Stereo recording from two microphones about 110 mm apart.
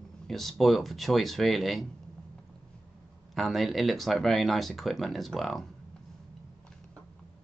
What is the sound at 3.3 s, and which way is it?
Speech, centre (ahead or behind).